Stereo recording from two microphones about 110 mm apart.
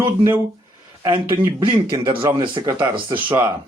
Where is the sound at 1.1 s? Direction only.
45° right (ahead or behind).